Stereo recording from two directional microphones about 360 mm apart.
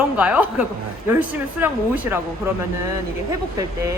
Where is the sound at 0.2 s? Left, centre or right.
Centre.